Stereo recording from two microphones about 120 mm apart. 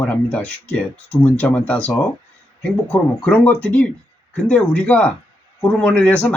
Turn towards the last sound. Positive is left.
turn(degrees=10)  # may be behind; listen again after turning